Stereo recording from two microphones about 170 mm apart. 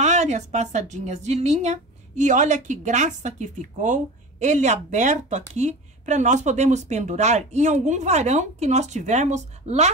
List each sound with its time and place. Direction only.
0.0 s a woman's voice: 45° right (ahead or behind)